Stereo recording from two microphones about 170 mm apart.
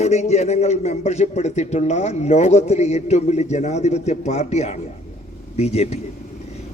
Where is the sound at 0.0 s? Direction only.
40° left (ahead or behind).